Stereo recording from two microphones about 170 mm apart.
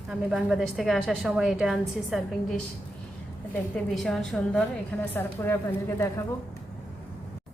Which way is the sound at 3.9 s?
5° left (ahead or behind).